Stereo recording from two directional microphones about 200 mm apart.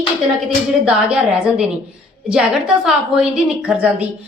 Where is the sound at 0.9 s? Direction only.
5° right (ahead or behind).